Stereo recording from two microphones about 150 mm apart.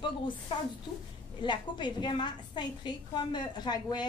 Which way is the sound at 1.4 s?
30° left (ahead or behind).